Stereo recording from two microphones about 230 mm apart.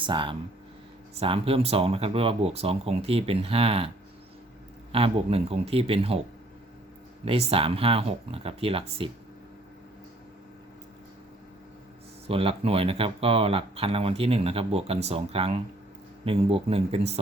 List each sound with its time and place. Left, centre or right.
0.0 s speech: right
7.3 s speech: right
12.3 s speech: right